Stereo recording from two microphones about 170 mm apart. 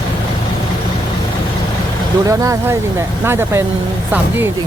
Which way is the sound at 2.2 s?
20° right (ahead or behind).